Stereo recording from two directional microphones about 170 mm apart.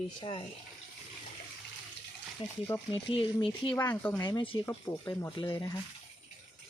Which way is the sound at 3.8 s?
10° left (ahead or behind).